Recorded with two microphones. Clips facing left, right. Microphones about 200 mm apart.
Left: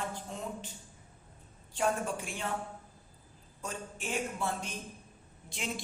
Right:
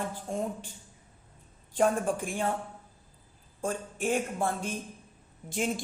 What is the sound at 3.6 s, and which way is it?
A man's voice, 50° right (ahead or behind).